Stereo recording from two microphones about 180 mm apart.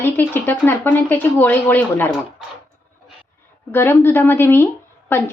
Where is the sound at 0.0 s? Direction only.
10° left (ahead or behind).